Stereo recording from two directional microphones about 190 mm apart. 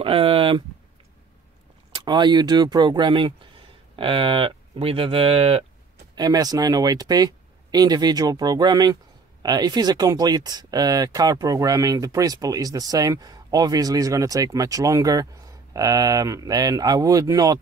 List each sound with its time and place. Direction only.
0.0 s a sound: 30° right (ahead or behind)
2.0 s speech: 25° right (ahead or behind)
6.1 s speech: 20° right (ahead or behind)